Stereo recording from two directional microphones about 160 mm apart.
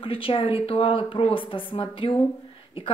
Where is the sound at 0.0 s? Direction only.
35° left (ahead or behind).